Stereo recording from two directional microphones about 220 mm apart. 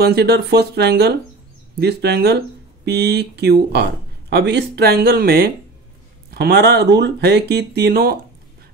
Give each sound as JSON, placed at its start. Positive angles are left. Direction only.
{"t": 0.0, "sound": "speech", "side_deg": -45}